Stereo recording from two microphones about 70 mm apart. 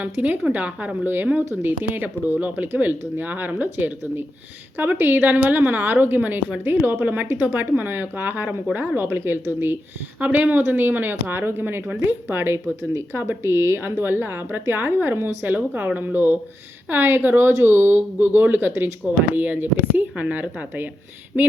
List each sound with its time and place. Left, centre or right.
0.0 s speech: right